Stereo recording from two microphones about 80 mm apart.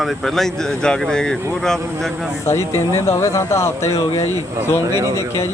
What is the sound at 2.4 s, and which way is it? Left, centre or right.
Speech, left.